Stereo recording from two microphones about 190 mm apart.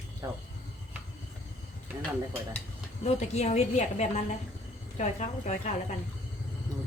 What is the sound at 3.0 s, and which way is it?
A woman's voice, 35° left (ahead or behind).